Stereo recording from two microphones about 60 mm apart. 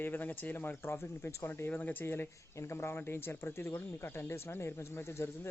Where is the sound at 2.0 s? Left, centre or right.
Left.